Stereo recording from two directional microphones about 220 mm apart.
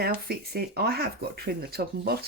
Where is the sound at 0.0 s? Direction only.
45° right (ahead or behind).